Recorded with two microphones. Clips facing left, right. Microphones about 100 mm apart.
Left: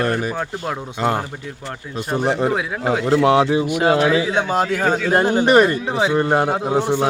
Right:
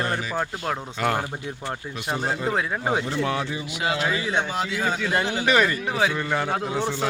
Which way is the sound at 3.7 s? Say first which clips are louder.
Left 9 dB; 50° left (ahead or behind).